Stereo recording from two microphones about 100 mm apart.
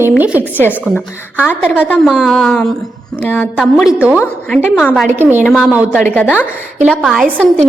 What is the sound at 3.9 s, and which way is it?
Speech, 10° right (ahead or behind).